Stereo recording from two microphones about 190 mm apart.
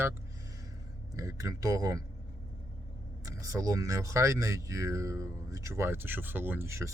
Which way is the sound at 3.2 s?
15° right (ahead or behind).